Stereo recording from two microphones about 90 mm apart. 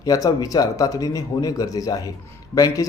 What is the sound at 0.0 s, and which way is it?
A man's voice, 45° left (ahead or behind).